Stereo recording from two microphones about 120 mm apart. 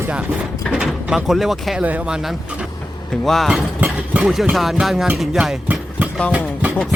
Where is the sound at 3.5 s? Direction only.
10° right (ahead or behind).